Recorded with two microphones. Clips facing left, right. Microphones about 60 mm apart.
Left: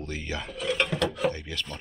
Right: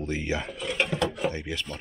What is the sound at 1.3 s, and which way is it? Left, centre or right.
Speech, centre.